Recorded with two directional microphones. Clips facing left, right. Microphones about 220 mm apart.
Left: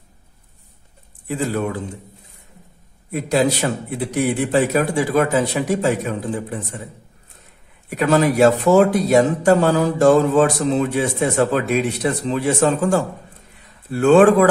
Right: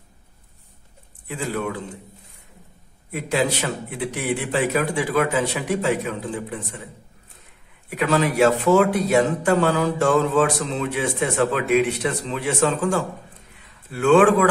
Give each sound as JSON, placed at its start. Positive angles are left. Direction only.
{"t": 1.2, "sound": "speech", "side_deg": 40}
{"t": 3.1, "sound": "speech", "side_deg": 40}
{"t": 7.9, "sound": "speech", "side_deg": 40}